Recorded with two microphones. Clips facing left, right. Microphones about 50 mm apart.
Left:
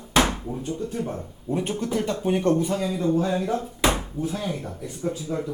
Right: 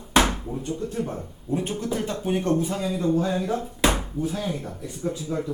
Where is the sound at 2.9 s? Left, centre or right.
Centre.